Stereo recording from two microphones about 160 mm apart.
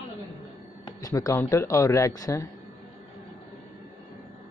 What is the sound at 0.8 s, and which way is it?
Speech, 20° left (ahead or behind).